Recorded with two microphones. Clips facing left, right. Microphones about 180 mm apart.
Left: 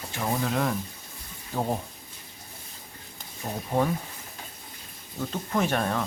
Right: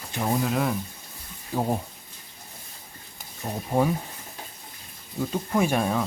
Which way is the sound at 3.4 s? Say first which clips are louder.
Right 2 dB; 10° right (ahead or behind).